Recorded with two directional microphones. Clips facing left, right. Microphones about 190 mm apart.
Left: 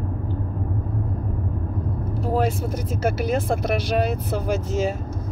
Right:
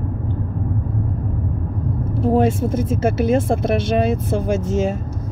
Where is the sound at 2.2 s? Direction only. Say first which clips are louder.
Right 6 dB; 25° right (ahead or behind).